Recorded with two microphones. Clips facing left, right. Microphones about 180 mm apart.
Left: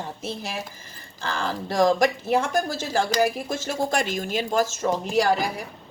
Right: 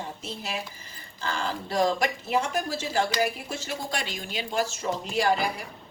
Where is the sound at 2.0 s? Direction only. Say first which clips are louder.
Left 5 dB; 45° left (ahead or behind).